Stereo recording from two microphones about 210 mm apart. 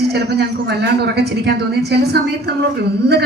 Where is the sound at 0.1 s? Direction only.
50° right (ahead or behind).